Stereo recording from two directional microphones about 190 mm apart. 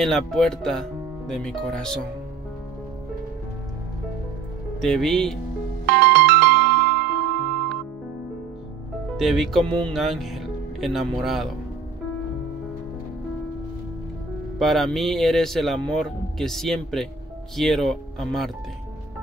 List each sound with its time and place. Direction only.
0.0 s speech: centre (ahead or behind)
4.7 s speech: centre (ahead or behind)
5.9 s music: 55° right (ahead or behind)
9.1 s speech: centre (ahead or behind)
14.6 s speech: centre (ahead or behind)